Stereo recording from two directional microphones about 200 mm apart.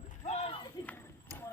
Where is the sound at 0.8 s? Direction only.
10° left (ahead or behind).